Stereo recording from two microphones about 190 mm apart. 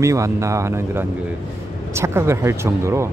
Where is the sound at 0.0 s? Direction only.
15° right (ahead or behind).